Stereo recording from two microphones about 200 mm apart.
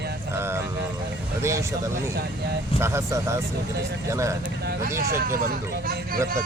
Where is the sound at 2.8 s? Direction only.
15° right (ahead or behind).